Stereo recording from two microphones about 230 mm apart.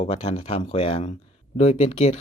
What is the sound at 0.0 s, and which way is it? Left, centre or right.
Speech, left.